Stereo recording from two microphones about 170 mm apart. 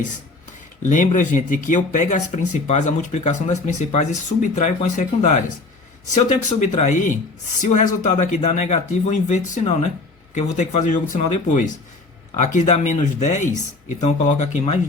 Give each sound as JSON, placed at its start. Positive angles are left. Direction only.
{"t": 0.9, "sound": "speech", "side_deg": 50}